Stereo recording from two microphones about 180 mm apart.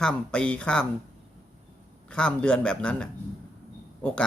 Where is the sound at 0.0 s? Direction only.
5° left (ahead or behind).